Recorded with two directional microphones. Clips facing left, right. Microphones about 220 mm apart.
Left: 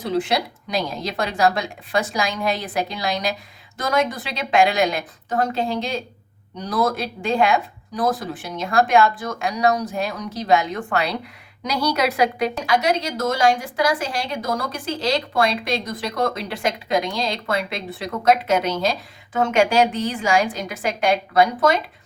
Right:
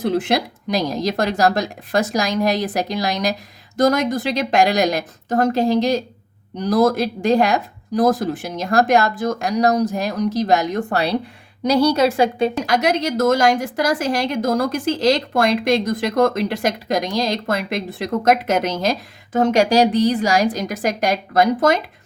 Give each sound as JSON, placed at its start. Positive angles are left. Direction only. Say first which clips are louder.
{"t": 0.1, "sound": "a woman's voice", "louder": "left 2 dB", "side_deg": -50}
{"t": 12.7, "sound": "a woman's voice", "louder": "right 2 dB", "side_deg": -45}